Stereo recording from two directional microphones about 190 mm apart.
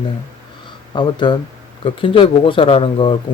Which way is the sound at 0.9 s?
25° left (ahead or behind).